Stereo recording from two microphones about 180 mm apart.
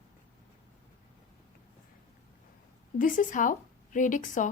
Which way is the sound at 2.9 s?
45° left (ahead or behind).